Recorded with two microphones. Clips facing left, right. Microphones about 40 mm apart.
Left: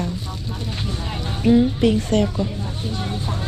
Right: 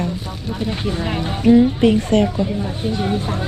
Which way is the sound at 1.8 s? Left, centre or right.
Right.